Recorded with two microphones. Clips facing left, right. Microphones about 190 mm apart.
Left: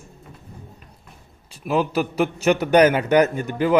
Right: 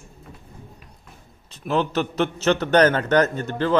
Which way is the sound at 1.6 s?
10° left (ahead or behind).